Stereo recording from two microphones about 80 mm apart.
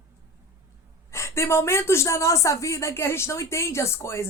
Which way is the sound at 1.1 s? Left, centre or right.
Left.